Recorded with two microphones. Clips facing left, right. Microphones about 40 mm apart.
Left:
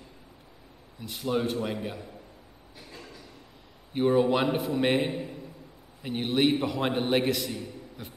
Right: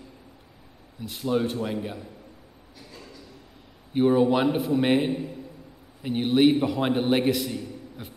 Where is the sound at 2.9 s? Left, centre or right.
Left.